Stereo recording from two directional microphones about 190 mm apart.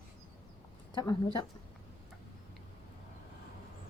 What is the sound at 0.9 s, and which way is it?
Speech, 25° left (ahead or behind).